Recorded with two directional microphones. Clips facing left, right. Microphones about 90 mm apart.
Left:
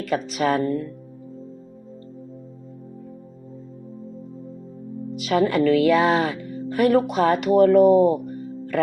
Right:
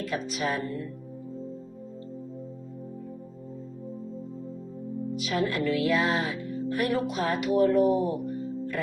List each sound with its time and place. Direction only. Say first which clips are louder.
0.0 s speech: left 7 dB; 65° left (ahead or behind)
5.1 s speech: left 9 dB; 65° left (ahead or behind)